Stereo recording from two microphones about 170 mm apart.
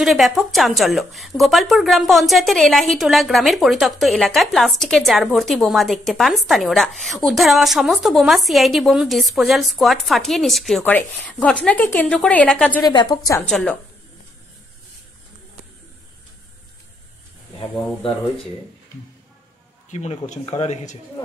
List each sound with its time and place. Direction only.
0.0 s a woman's voice: centre (ahead or behind)
12.8 s a woman's voice: 25° left (ahead or behind)
13.5 s speech: 5° left (ahead or behind)
19.9 s speech: 40° left (ahead or behind)